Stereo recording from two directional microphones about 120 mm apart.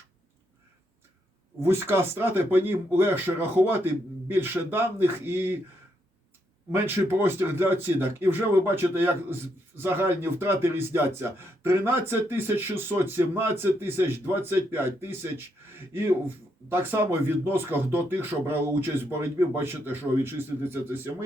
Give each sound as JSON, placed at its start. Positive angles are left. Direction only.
{"t": 1.6, "sound": "speech", "side_deg": -20}
{"t": 6.7, "sound": "speech", "side_deg": -20}